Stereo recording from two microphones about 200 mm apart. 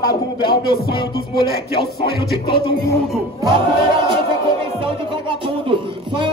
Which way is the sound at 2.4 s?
25° left (ahead or behind).